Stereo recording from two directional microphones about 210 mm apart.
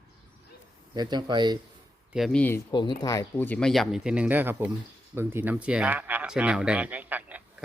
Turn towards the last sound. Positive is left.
turn(degrees=-5)  # may be behind; listen again after turning